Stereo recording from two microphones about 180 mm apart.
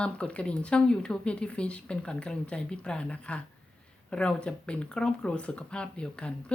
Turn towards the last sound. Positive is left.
turn(degrees=5)  # may be behind; listen again after turning